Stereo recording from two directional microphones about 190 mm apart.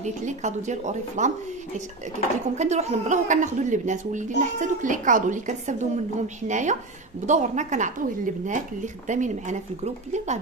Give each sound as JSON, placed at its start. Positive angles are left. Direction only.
{"t": 0.0, "sound": "a woman's voice", "side_deg": -40}
{"t": 2.5, "sound": "a woman's voice", "side_deg": -35}